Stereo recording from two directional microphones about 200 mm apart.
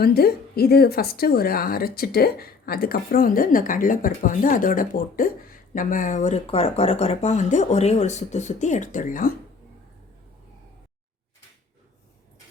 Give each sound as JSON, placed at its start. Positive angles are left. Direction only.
{"t": 0.0, "sound": "a woman's voice", "side_deg": 50}